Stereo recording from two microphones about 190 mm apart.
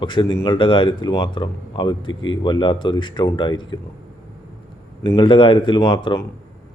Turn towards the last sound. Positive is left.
turn(degrees=25)  # may be behind; listen again after turning